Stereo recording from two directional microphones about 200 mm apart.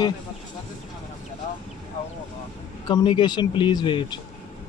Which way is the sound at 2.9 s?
25° left (ahead or behind).